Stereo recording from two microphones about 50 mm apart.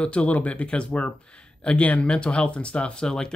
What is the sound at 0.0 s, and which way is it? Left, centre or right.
Speech, left.